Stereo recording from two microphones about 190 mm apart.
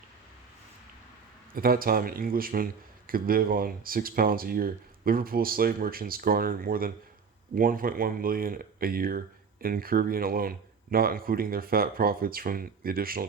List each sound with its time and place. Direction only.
1.5 s speech: 50° right (ahead or behind)